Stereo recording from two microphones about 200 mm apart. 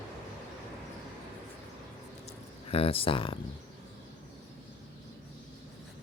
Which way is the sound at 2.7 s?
30° left (ahead or behind).